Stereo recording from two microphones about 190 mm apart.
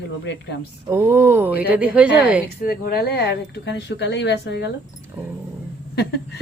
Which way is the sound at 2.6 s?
50° left (ahead or behind).